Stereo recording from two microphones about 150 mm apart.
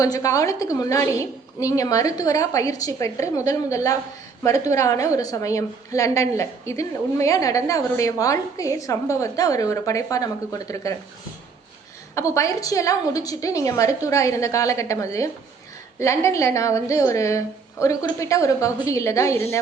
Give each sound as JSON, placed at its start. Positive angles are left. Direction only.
{"t": 0.0, "sound": "a woman's voice", "side_deg": 20}
{"t": 12.1, "sound": "a woman's voice", "side_deg": 20}